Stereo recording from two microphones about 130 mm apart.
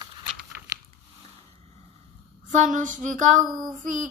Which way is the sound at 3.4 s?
30° right (ahead or behind).